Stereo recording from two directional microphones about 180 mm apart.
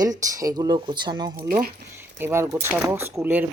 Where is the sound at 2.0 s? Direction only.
10° right (ahead or behind).